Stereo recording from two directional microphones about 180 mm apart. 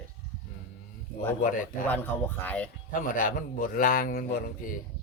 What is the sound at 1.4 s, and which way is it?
Speech, 45° left (ahead or behind).